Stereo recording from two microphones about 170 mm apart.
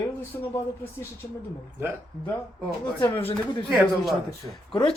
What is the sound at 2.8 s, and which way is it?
Speech, 30° left (ahead or behind).